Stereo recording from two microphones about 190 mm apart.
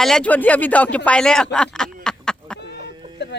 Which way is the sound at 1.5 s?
5° left (ahead or behind).